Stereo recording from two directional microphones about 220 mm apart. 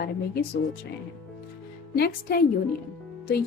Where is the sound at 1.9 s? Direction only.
45° left (ahead or behind).